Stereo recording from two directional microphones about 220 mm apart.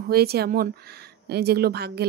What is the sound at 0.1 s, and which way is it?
Speech, 45° right (ahead or behind).